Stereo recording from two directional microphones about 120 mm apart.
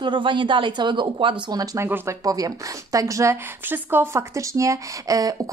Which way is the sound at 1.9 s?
20° right (ahead or behind).